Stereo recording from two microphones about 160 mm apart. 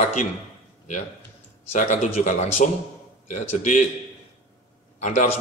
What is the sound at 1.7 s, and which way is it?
Speech, 45° left (ahead or behind).